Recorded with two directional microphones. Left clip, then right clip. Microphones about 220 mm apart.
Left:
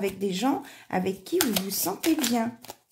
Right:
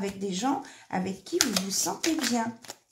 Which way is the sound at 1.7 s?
40° left (ahead or behind).